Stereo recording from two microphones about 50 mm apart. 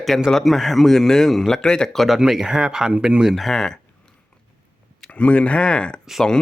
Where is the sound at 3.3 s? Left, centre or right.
Centre.